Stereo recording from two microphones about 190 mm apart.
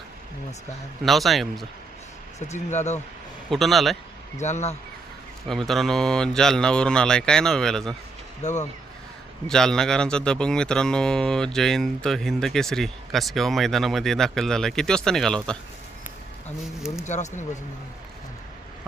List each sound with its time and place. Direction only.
1.0 s speech: centre (ahead or behind)
2.5 s speech: 35° left (ahead or behind)
3.5 s speech: centre (ahead or behind)
4.4 s speech: 35° left (ahead or behind)
5.5 s speech: centre (ahead or behind)
8.4 s speech: 40° left (ahead or behind)
9.5 s speech: 5° left (ahead or behind)
17.1 s speech: 40° left (ahead or behind)